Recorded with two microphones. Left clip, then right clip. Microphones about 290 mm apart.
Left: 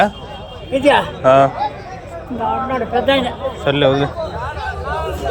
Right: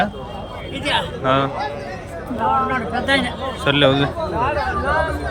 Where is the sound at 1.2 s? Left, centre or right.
Centre.